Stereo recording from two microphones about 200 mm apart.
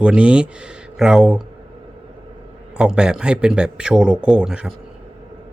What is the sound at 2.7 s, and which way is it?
A man's voice, 5° right (ahead or behind).